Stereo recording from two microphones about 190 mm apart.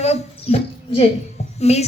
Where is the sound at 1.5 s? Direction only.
35° left (ahead or behind).